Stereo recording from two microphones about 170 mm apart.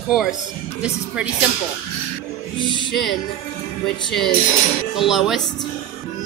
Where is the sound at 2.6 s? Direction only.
30° left (ahead or behind).